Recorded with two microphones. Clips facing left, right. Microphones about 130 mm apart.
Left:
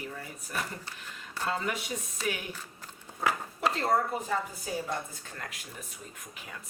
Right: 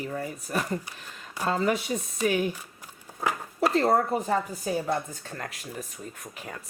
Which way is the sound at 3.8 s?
40° right (ahead or behind).